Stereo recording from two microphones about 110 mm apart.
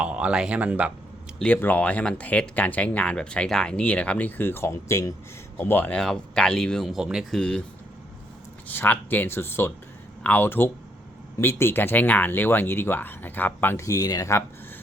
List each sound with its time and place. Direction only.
0.0 s speech: 10° right (ahead or behind)
1.4 s speech: 15° left (ahead or behind)
5.5 s speech: 15° left (ahead or behind)
6.0 s speech: 5° left (ahead or behind)
7.3 s speech: 10° left (ahead or behind)
8.6 s speech: 20° left (ahead or behind)